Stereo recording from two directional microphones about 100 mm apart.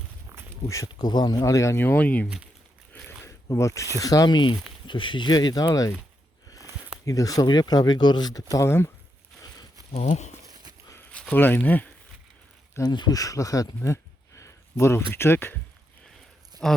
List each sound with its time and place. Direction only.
0.7 s speech: 35° left (ahead or behind)
1.8 s speech: 15° left (ahead or behind)
2.2 s speech: 10° right (ahead or behind)
2.9 s a sound: 25° left (ahead or behind)
3.9 s speech: 35° left (ahead or behind)
7.0 s speech: 35° left (ahead or behind)
9.9 s speech: 90° left
10.5 s walk: 45° right (ahead or behind)
11.1 s a sound: 10° left (ahead or behind)
11.3 s speech: 20° left (ahead or behind)
12.8 s speech: 45° left (ahead or behind); by 15.5 s 25° left (ahead or behind)
16.6 s speech: 5° left (ahead or behind)